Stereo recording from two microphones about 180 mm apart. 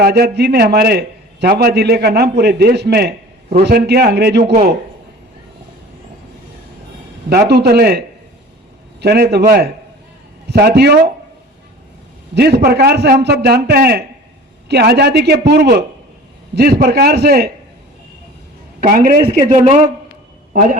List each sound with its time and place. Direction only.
0.0 s a man's voice: 60° right (ahead or behind)
7.3 s a man's voice: 60° right (ahead or behind)
12.3 s a man's voice: 65° right (ahead or behind)
18.8 s a man's voice: 55° right (ahead or behind)